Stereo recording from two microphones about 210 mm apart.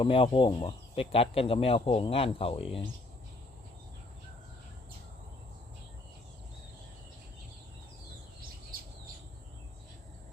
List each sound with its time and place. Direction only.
0.0 s speech: 25° left (ahead or behind)